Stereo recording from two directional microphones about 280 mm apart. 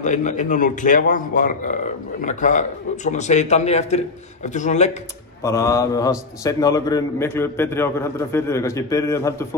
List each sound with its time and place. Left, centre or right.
0.0 s a man's voice: left
5.4 s a man's voice: centre